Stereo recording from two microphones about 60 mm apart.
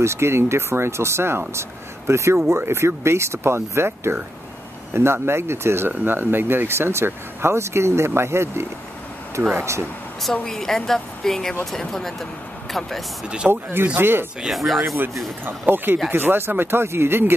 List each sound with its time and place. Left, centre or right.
0.0 s speech: right
2.3 s speech: right
10.3 s a woman's voice: centre
13.5 s speech: right
15.4 s speech: right